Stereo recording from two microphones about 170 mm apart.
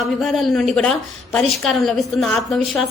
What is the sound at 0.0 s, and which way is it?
A woman's voice, centre (ahead or behind).